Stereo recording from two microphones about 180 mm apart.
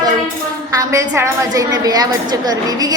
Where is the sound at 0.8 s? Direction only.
15° right (ahead or behind).